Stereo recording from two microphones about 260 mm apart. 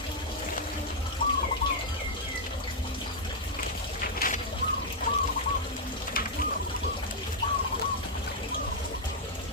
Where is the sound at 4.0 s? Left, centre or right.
Left.